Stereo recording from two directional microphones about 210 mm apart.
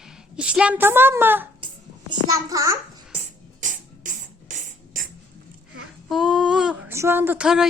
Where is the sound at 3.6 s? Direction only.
40° right (ahead or behind).